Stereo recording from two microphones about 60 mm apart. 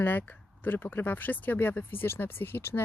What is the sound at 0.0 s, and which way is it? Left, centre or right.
A woman's voice, left.